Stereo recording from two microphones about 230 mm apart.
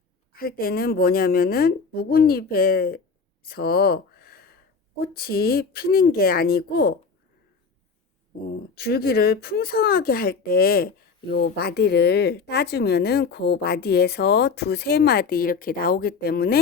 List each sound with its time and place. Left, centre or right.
0.3 s speech: left
3.4 s a sound: left
4.9 s speech: left
8.7 s speech: left